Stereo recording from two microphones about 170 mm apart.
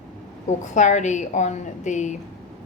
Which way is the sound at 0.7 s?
45° left (ahead or behind).